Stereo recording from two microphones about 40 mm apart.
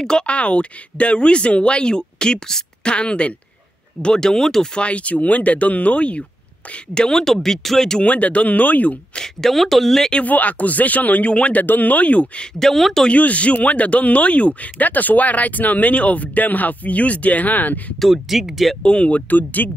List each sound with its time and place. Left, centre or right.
0.3 s speech: left; by 4.6 s centre
4.7 s speech: left
6.9 s speech: centre
8.0 s speech: left
9.1 s speech: centre
10.2 s speech: left
11.6 s speech: left
12.5 s speech: centre
13.1 s speech: left
17.9 s speech: centre
18.8 s speech: left